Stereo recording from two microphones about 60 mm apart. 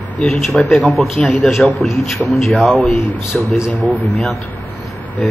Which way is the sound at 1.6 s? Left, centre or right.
Centre.